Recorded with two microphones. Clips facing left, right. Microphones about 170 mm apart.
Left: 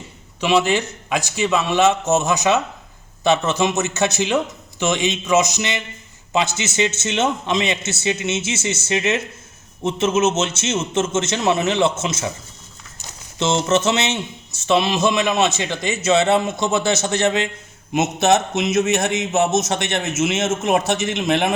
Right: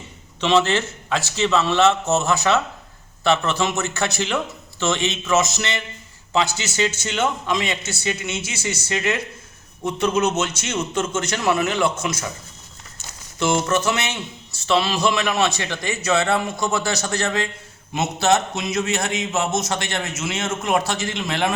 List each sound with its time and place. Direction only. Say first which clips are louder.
0.3 s a man's voice: left 1 dB; 10° left (ahead or behind)
13.4 s a man's voice: left 2 dB; 25° left (ahead or behind)